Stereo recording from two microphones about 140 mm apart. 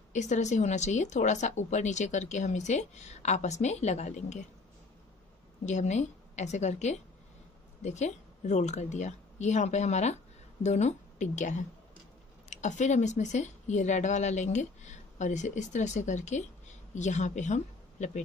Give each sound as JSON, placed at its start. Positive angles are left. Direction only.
{"t": 0.1, "sound": "speech", "side_deg": 55}
{"t": 5.7, "sound": "a woman's voice", "side_deg": 55}